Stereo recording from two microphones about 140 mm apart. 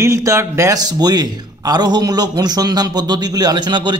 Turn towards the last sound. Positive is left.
turn(degrees=-30)  # may be behind; listen again after turning